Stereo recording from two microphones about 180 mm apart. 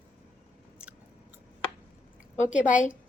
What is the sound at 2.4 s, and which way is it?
Speech, 45° left (ahead or behind).